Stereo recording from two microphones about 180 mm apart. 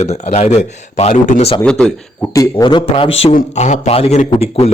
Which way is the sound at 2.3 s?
20° left (ahead or behind).